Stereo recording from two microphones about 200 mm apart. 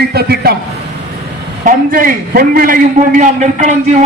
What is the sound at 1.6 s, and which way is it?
A man's voice, 45° right (ahead or behind).